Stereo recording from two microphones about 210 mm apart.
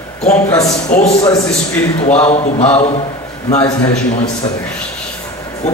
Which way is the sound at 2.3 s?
30° left (ahead or behind).